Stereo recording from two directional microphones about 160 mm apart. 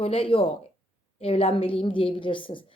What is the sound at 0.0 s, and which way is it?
A woman's voice, 35° left (ahead or behind).